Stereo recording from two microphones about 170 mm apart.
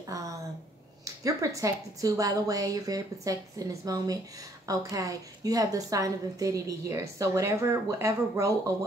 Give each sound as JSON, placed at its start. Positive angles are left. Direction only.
{"t": 1.0, "sound": "a woman's voice", "side_deg": -20}